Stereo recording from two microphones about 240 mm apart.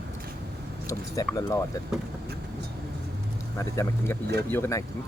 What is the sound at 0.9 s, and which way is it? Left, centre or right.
Speech, centre.